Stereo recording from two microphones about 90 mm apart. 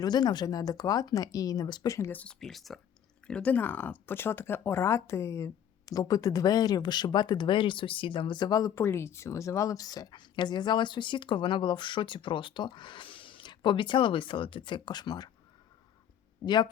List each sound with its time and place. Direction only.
0.0 s speech: 50° left (ahead or behind)
1.9 s speech: 30° left (ahead or behind)
2.4 s speech: centre (ahead or behind)
3.2 s speech: 15° left (ahead or behind); by 8.7 s 45° left (ahead or behind)
8.7 s speech: 30° left (ahead or behind); by 15.3 s 50° left (ahead or behind)